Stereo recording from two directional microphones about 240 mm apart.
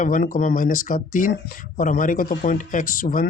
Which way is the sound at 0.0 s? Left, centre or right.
Left.